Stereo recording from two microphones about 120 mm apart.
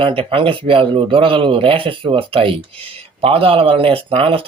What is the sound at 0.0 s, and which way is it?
Speech, 50° right (ahead or behind).